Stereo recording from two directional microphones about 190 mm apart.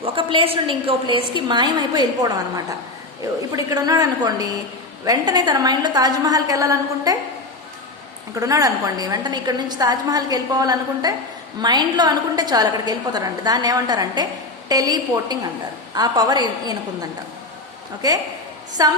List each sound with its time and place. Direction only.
0.0 s a woman's voice: 25° right (ahead or behind)
3.5 s a woman's voice: 20° right (ahead or behind)
8.4 s a woman's voice: 20° right (ahead or behind)